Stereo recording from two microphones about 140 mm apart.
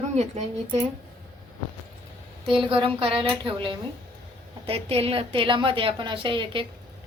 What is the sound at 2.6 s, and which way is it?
A woman's voice, 40° right (ahead or behind).